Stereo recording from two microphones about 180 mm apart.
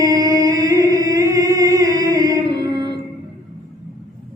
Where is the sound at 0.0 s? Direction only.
20° right (ahead or behind).